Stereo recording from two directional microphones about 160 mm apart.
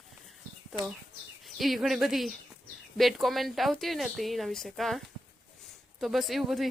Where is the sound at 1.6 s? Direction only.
Centre (ahead or behind).